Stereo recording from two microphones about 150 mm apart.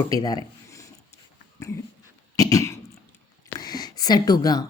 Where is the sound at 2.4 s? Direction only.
20° left (ahead or behind).